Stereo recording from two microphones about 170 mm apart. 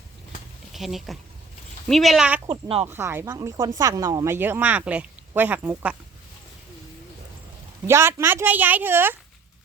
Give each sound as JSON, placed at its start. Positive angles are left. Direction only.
{"t": 0.7, "sound": "speech", "side_deg": 0}
{"t": 2.5, "sound": "speech", "side_deg": -35}
{"t": 2.8, "sound": "speech", "side_deg": -15}
{"t": 7.9, "sound": "speech", "side_deg": -15}